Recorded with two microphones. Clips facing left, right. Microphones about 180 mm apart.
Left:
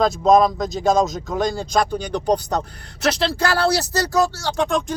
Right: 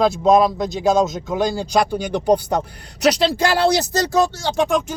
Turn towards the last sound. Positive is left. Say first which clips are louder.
# right 2 dB
turn(degrees=-10)  # may be behind; listen again after turning